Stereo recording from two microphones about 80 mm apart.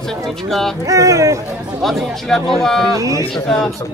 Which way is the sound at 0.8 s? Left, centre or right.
Right.